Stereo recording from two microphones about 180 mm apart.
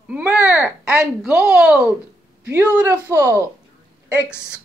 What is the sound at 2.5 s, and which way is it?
Speech, 15° right (ahead or behind).